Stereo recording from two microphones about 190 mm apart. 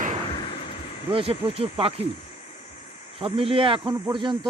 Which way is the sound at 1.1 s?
30° right (ahead or behind).